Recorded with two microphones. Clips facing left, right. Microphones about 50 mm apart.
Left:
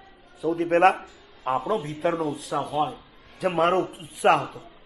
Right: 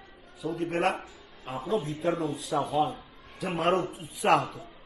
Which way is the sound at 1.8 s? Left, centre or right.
Left.